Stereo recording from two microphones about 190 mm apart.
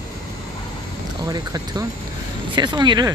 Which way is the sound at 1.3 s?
20° right (ahead or behind).